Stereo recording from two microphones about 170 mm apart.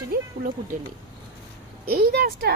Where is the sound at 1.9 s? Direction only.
65° right (ahead or behind).